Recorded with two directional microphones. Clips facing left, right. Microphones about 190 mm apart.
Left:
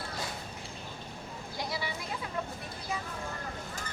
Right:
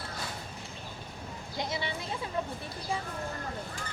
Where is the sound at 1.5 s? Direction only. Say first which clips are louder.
Right 2 dB; 20° right (ahead or behind).